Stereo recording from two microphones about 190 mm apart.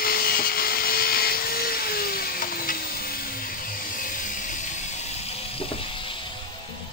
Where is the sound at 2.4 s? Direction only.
50° left (ahead or behind).